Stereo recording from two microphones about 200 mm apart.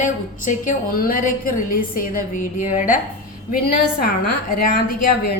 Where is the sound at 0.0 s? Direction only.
40° left (ahead or behind).